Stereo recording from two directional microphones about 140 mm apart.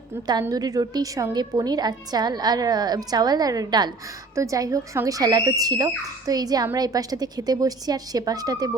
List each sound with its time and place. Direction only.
0.3 s a woman's voice: 30° right (ahead or behind)